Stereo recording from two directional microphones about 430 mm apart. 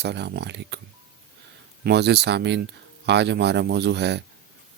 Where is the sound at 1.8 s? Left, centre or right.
Right.